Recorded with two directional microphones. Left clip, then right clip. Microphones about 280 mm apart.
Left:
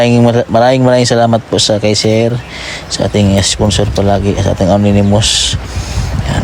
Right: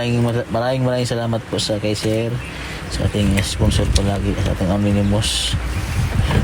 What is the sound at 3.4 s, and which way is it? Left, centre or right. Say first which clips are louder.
Speech: left 9 dB; left.